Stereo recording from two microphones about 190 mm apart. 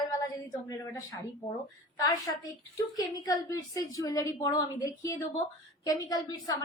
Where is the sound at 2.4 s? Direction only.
20° left (ahead or behind).